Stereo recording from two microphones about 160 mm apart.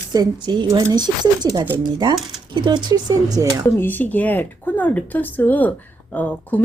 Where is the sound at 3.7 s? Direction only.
15° left (ahead or behind).